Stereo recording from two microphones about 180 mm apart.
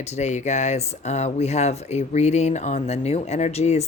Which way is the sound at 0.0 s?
40° left (ahead or behind).